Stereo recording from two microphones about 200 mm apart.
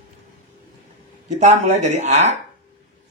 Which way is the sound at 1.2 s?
35° right (ahead or behind).